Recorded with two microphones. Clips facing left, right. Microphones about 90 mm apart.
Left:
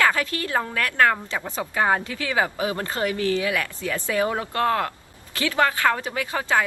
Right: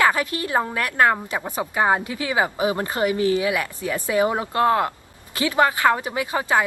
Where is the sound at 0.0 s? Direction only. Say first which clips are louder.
Right 2 dB; 20° right (ahead or behind).